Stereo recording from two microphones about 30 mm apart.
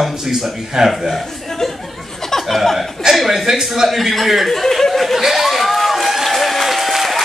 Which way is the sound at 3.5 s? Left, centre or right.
Centre.